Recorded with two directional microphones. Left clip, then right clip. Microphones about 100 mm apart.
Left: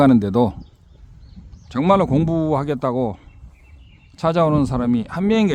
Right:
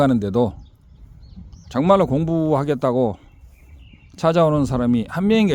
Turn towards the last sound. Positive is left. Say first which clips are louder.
# even
turn(degrees=-15)  # may be behind; listen again after turning